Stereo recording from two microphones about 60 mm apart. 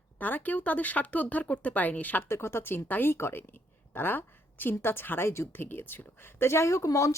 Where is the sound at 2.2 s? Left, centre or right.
Left.